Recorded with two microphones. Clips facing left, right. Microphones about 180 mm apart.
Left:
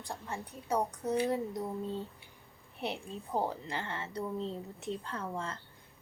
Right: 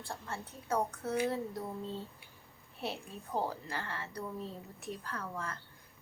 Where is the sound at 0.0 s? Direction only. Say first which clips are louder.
Left 2 dB; 15° left (ahead or behind).